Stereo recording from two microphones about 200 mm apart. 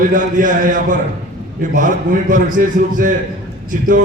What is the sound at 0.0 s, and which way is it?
Speech, 40° right (ahead or behind).